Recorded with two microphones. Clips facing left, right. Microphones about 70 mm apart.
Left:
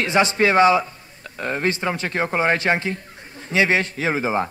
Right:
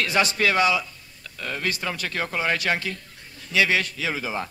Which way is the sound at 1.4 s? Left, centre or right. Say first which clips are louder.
Left 6 dB; left.